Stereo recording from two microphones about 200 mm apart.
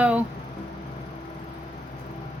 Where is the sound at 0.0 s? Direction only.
5° right (ahead or behind).